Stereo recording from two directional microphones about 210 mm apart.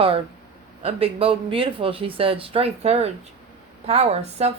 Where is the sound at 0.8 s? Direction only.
30° right (ahead or behind).